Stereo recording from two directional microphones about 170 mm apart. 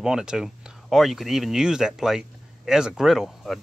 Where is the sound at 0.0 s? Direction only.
5° right (ahead or behind).